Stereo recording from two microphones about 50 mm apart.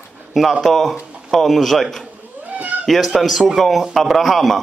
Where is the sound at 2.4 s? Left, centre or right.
Right.